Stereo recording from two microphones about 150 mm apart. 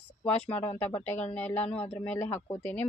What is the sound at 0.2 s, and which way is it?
Speech, 10° left (ahead or behind).